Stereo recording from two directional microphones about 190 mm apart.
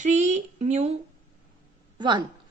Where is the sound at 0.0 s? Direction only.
35° right (ahead or behind).